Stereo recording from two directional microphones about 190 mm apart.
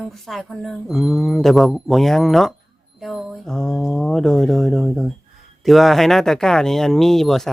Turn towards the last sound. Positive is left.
turn(degrees=0)  # may be behind; listen again after turning